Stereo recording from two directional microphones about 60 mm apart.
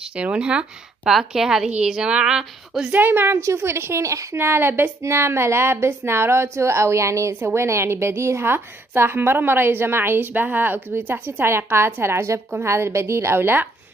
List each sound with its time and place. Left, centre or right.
0.1 s speech: centre
1.1 s speech: centre
2.9 s a woman's voice: right
3.3 s a woman's voice: right
4.4 s a woman's voice: right